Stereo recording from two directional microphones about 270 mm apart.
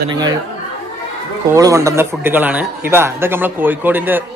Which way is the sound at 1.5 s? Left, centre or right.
Centre.